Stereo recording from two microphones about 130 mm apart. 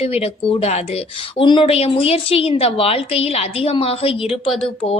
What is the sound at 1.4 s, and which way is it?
A woman's voice, 40° left (ahead or behind).